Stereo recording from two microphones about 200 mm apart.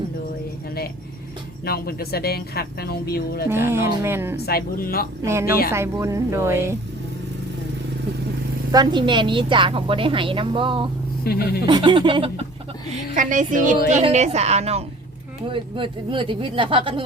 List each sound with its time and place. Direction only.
1.6 s speech: 50° left (ahead or behind)
3.5 s a woman's voice: 10° right (ahead or behind)
4.4 s speech: 50° left (ahead or behind)
5.2 s a woman's voice: 15° right (ahead or behind)
5.5 s speech: 45° left (ahead or behind)
5.7 s a woman's voice: 15° right (ahead or behind)
8.7 s a woman's voice: 20° right (ahead or behind)
11.2 s speech: 50° left (ahead or behind)
11.6 s a woman's voice: 20° right (ahead or behind)
13.1 s a woman's voice: 40° right (ahead or behind)